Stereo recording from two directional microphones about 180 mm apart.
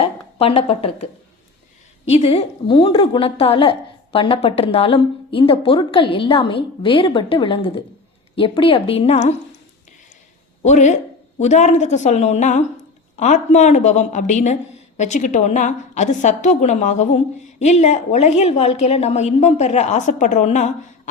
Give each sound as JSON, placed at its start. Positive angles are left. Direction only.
{"t": 0.0, "sound": "a woman's voice", "side_deg": 35}
{"t": 10.6, "sound": "a woman's voice", "side_deg": 40}